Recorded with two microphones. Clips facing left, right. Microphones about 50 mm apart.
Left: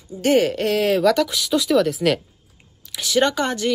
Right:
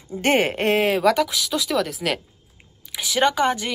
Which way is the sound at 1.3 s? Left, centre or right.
Centre.